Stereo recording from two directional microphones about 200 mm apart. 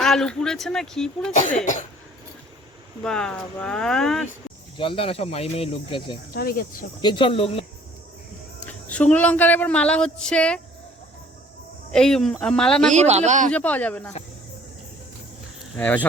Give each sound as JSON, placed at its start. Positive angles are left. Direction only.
{"t": 0.0, "sound": "speech", "side_deg": 0}
{"t": 1.3, "sound": "speech", "side_deg": 35}
{"t": 3.0, "sound": "speech", "side_deg": 5}
{"t": 4.8, "sound": "speech", "side_deg": 25}
{"t": 6.3, "sound": "speech", "side_deg": 50}
{"t": 7.0, "sound": "speech", "side_deg": 25}
{"t": 8.6, "sound": "speech", "side_deg": 5}
{"t": 11.9, "sound": "speech", "side_deg": 5}
{"t": 12.9, "sound": "speech", "side_deg": -35}
{"t": 13.5, "sound": "speech", "side_deg": 10}
{"t": 15.7, "sound": "speech", "side_deg": 5}